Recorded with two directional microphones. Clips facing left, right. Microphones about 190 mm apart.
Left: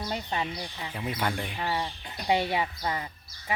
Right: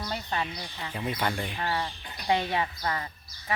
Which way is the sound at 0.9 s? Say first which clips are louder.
Right 1 dB; 5° left (ahead or behind).